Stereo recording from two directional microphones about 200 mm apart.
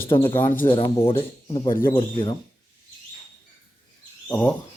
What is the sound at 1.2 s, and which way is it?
Speech, 25° left (ahead or behind).